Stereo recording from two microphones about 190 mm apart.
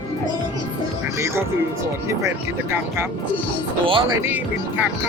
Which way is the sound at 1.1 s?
15° right (ahead or behind).